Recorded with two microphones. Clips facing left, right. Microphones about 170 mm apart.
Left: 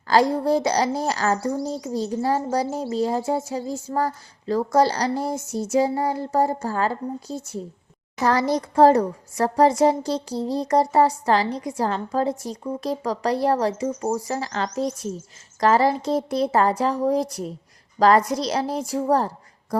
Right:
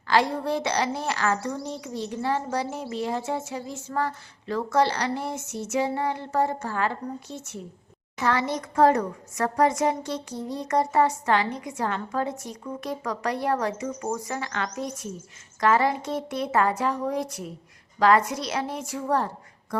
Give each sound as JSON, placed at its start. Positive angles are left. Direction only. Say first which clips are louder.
{"t": 0.1, "sound": "speech", "louder": "left 5 dB", "side_deg": 40}